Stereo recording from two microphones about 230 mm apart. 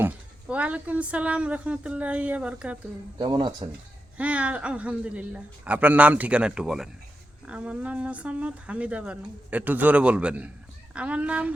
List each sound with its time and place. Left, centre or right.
0.0 s speech: centre
3.2 s speech: centre
4.2 s speech: centre